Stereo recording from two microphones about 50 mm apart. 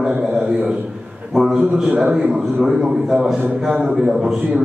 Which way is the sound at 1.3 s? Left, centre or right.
Centre.